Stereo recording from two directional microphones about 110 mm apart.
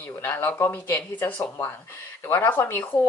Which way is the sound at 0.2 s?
20° left (ahead or behind).